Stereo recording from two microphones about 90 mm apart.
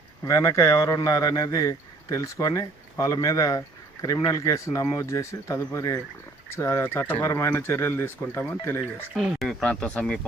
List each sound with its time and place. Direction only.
0.3 s speech: 40° left (ahead or behind)
9.1 s speech: centre (ahead or behind)
9.6 s speech: 10° left (ahead or behind)